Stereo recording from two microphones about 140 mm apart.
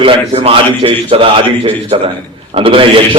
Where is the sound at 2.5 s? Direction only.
40° right (ahead or behind).